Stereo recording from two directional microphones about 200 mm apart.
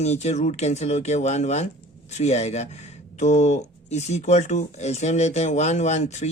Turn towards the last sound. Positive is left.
turn(degrees=35)  # may be behind; listen again after turning